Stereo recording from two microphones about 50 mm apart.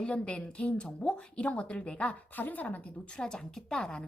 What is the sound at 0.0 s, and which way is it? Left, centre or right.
A woman's voice, left.